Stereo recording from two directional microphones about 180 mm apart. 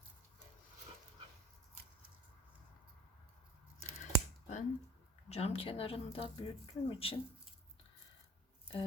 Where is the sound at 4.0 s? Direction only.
40° left (ahead or behind).